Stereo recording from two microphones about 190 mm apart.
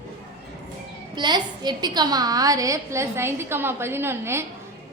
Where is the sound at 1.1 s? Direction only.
25° right (ahead or behind).